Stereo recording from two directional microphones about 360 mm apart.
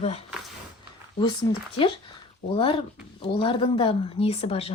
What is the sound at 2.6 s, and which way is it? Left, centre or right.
Speech, centre.